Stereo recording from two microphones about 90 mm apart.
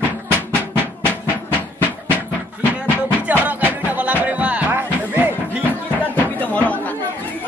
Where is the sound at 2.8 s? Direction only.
20° right (ahead or behind).